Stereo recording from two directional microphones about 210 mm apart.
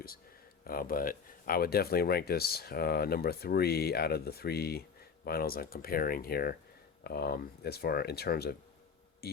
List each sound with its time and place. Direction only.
0.7 s speech: 45° left (ahead or behind)